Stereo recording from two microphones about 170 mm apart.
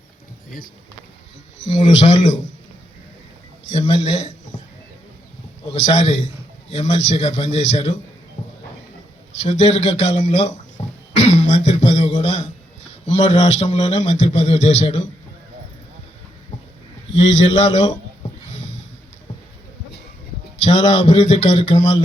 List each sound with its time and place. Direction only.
1.5 s a man's voice: 90° left
3.7 s speech: 40° left (ahead or behind)
5.8 s a man's voice: 40° left (ahead or behind)
6.2 s a sound: 40° left (ahead or behind)
7.1 s a man's voice: 40° left (ahead or behind)
9.5 s a man's voice: 40° left (ahead or behind)
11.2 s throat clearing: 40° left (ahead or behind)
13.1 s a man's voice: 45° left (ahead or behind)
17.2 s a man's voice: 45° left (ahead or behind)
20.7 s a man's voice: 45° left (ahead or behind)
21.7 s speech: 25° left (ahead or behind)